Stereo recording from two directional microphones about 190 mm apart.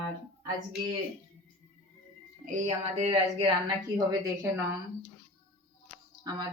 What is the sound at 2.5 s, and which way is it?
Speech, 35° right (ahead or behind).